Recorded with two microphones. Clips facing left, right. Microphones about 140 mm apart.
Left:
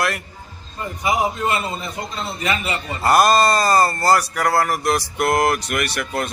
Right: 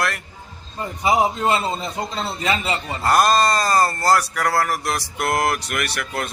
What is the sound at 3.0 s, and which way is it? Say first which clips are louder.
A man's voice: left 2 dB; 5° left (ahead or behind).